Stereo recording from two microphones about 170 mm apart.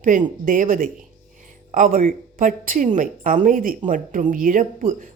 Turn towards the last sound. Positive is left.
turn(degrees=-55)  # may be behind; listen again after turning